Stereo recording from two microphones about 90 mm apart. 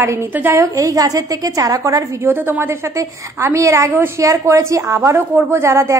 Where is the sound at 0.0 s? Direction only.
30° right (ahead or behind).